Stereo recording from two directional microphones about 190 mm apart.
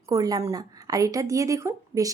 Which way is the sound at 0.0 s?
20° right (ahead or behind).